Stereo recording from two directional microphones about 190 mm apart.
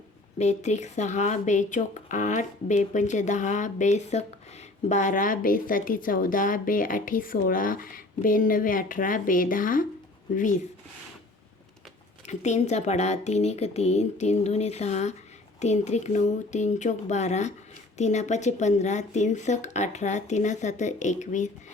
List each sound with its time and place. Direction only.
0.3 s a woman's voice: 35° left (ahead or behind)
12.2 s speech: 35° left (ahead or behind)